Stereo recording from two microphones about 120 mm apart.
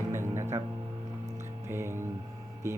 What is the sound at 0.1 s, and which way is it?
Music, 20° right (ahead or behind).